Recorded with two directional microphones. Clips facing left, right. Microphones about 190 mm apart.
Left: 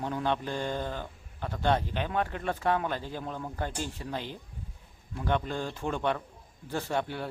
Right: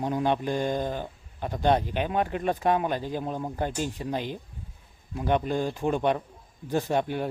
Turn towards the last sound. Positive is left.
turn(degrees=-15)  # may be behind; listen again after turning